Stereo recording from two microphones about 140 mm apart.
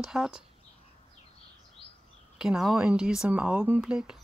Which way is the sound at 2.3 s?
5° right (ahead or behind).